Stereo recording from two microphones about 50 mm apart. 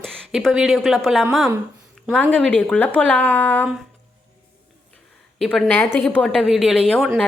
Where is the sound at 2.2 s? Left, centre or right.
Left.